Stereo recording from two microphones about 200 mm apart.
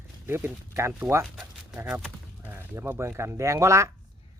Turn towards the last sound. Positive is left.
turn(degrees=-15)  # may be behind; listen again after turning